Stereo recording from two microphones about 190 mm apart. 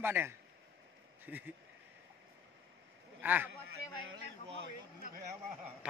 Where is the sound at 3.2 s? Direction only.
10° right (ahead or behind).